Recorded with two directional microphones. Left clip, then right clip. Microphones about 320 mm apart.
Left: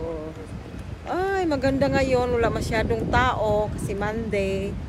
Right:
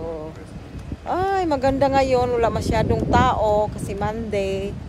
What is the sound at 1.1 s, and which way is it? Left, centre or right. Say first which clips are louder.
Speech: right 3 dB; centre.